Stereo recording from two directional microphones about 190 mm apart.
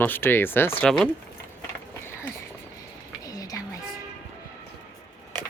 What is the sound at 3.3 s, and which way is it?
Music, 20° left (ahead or behind).